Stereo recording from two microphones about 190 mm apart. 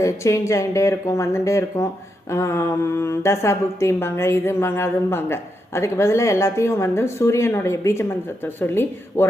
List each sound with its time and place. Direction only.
0.0 s speech: 15° left (ahead or behind)